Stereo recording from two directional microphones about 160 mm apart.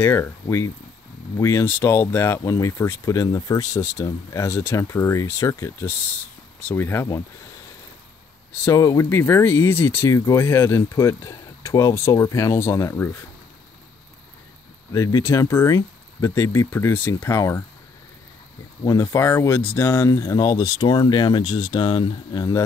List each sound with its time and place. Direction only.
0.0 s speech: 15° left (ahead or behind)
8.5 s speech: 20° left (ahead or behind)
14.9 s speech: 20° left (ahead or behind)
18.9 s speech: 20° left (ahead or behind)